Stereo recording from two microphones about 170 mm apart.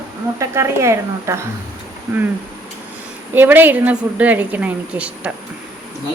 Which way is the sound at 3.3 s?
10° right (ahead or behind).